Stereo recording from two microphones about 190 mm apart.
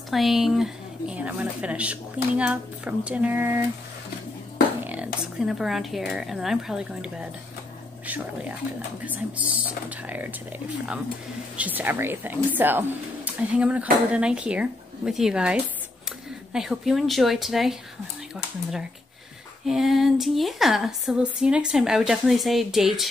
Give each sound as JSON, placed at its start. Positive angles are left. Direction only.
{"t": 0.1, "sound": "speech", "side_deg": 0}
{"t": 4.8, "sound": "a woman's voice", "side_deg": -5}
{"t": 9.0, "sound": "speech", "side_deg": -10}
{"t": 11.5, "sound": "a woman's voice", "side_deg": -10}